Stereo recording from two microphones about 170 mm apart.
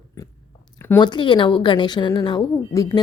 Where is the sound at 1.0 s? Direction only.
25° left (ahead or behind).